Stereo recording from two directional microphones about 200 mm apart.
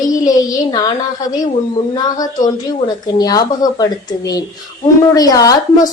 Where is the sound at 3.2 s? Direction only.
20° left (ahead or behind).